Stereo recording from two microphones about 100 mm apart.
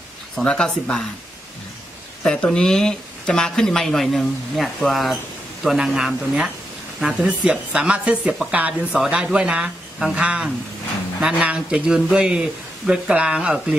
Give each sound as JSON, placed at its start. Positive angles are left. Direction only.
{"t": 0.4, "sound": "speech", "side_deg": 10}
{"t": 2.2, "sound": "speech", "side_deg": 5}